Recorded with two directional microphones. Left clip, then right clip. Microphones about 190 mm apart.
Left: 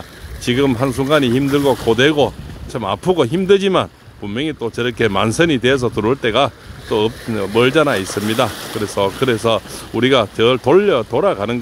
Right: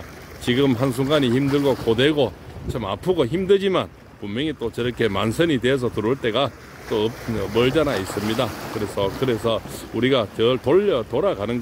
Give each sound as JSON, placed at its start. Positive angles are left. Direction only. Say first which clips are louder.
{"t": 0.5, "sound": "speech", "louder": "left 4 dB", "side_deg": 15}